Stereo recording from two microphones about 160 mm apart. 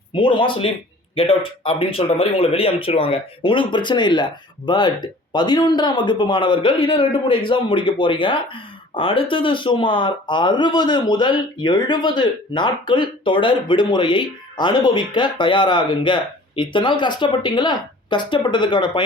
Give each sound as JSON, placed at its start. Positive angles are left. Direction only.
{"t": 0.1, "sound": "speech", "side_deg": 30}